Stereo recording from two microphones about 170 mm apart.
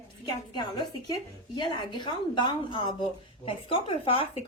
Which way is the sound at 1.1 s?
25° left (ahead or behind).